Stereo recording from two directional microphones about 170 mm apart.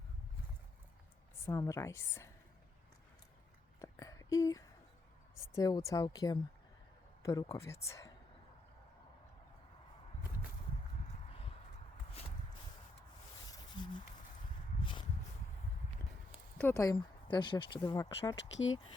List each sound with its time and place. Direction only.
1.5 s a woman's voice: 20° left (ahead or behind)
3.8 s a sound: 20° left (ahead or behind)
5.5 s speech: 20° left (ahead or behind)
13.5 s a sound: 25° left (ahead or behind)
16.6 s speech: 15° left (ahead or behind)
18.3 s speech: 90° left